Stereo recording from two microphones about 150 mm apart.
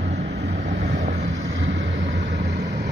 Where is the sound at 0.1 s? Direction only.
50° right (ahead or behind).